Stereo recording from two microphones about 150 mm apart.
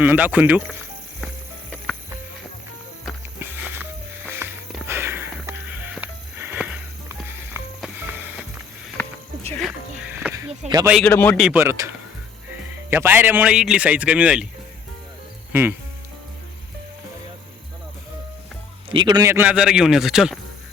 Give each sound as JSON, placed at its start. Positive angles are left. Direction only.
{"t": 0.0, "sound": "speech", "side_deg": -10}
{"t": 3.4, "sound": "music", "side_deg": -15}
{"t": 4.9, "sound": "sniff", "side_deg": -15}
{"t": 7.9, "sound": "music", "side_deg": -10}
{"t": 9.6, "sound": "music", "side_deg": -5}
{"t": 10.6, "sound": "a sound", "side_deg": -50}
{"t": 11.0, "sound": "a man's voice", "side_deg": 10}
{"t": 11.3, "sound": "a man's voice", "side_deg": -5}
{"t": 11.6, "sound": "speech", "side_deg": -15}
{"t": 12.9, "sound": "speech", "side_deg": -15}
{"t": 18.9, "sound": "a man's voice", "side_deg": -30}
{"t": 19.3, "sound": "a man's voice", "side_deg": -10}